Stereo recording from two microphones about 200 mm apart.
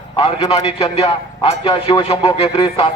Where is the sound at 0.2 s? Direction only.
25° left (ahead or behind).